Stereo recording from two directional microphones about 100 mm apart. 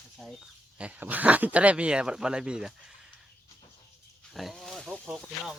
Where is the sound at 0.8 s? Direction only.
15° right (ahead or behind).